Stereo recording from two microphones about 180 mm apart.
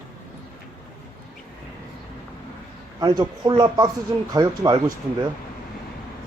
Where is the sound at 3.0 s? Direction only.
25° right (ahead or behind).